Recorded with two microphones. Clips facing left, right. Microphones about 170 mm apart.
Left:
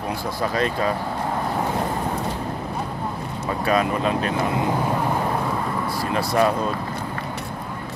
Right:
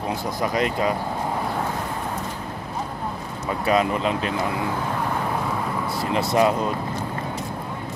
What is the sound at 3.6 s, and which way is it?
Speech, 20° right (ahead or behind).